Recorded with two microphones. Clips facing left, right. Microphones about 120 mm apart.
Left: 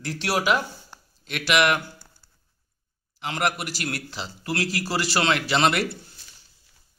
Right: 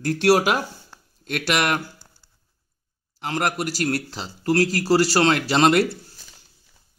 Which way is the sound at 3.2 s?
40° right (ahead or behind).